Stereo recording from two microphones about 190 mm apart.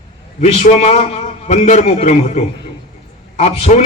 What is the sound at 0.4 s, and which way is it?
A man's voice, 35° left (ahead or behind).